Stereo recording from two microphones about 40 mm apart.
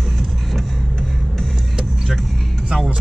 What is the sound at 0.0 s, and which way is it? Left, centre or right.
Vehicle, centre.